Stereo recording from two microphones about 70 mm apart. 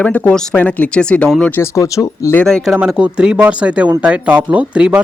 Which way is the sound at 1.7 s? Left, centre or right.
Left.